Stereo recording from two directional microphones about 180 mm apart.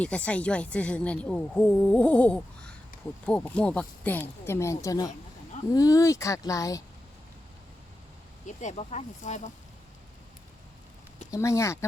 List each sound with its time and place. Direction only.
0.0 s speech: 5° left (ahead or behind)
8.6 s speech: 35° left (ahead or behind)
11.3 s speech: 15° left (ahead or behind)